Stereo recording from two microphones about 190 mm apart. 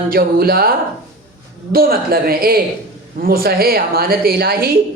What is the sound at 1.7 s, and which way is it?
Speech, 50° right (ahead or behind).